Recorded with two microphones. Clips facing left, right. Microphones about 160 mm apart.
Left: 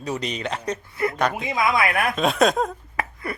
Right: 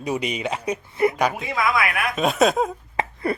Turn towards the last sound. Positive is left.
turn(degrees=-25)  # may be behind; listen again after turning